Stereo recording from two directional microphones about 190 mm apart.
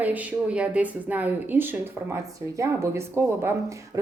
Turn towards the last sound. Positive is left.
turn(degrees=-10)  # may be behind; listen again after turning